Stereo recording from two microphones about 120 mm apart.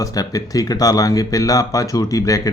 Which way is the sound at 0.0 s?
30° left (ahead or behind).